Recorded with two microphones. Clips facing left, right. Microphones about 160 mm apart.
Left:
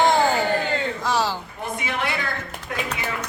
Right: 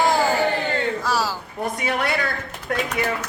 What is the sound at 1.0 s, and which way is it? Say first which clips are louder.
Speech: left 1 dB; 5° right (ahead or behind).